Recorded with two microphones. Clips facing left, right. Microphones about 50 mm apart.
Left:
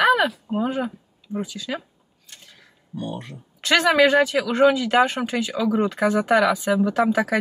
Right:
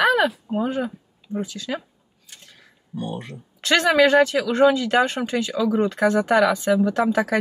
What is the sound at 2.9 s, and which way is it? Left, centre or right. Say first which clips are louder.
Speech: right 1 dB; centre.